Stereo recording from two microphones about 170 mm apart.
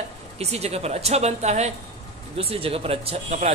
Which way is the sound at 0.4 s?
40° right (ahead or behind).